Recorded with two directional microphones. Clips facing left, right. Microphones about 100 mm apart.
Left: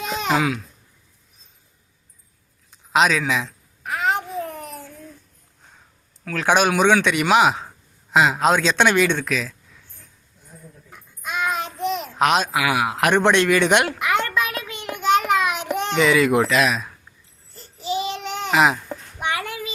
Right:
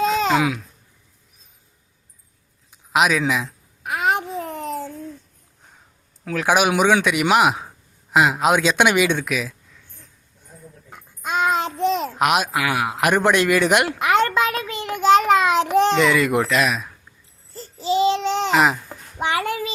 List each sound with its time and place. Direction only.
2.9 s babbling: 5° right (ahead or behind); by 5.0 s 25° right (ahead or behind)
6.3 s a man's voice: 5° right (ahead or behind)
10.9 s babbling: 30° right (ahead or behind)
12.1 s a man's voice: 5° right (ahead or behind)
14.0 s a sound: 25° right (ahead or behind)
16.0 s a man's voice: centre (ahead or behind)
17.5 s babbling: 30° right (ahead or behind)
18.5 s a man's voice: centre (ahead or behind)
19.2 s child singing: 30° right (ahead or behind)